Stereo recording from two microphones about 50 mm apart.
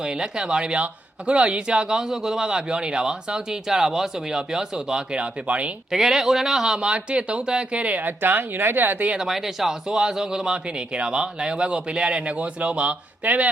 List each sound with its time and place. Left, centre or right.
0.0 s a man's voice: centre
5.1 s speech: right
5.9 s a man's voice: centre
6.7 s speech: right
8.2 s speech: right
9.1 s a man's voice: centre; by 13.5 s right